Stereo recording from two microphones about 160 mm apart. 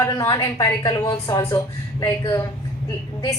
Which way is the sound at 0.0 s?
20° left (ahead or behind).